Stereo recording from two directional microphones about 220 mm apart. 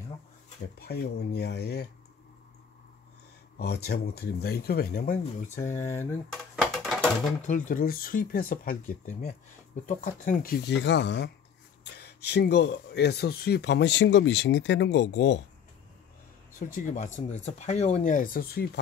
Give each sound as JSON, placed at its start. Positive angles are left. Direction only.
{"t": 0.7, "sound": "speech", "side_deg": 45}
{"t": 3.5, "sound": "speech", "side_deg": 45}
{"t": 5.7, "sound": "speech", "side_deg": 10}
{"t": 6.5, "sound": "a sound", "side_deg": 0}
{"t": 7.4, "sound": "speech", "side_deg": 35}
{"t": 16.5, "sound": "speech", "side_deg": 35}